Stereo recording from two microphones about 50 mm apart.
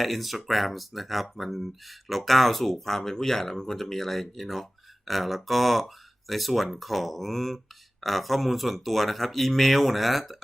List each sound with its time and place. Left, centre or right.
0.0 s speech: centre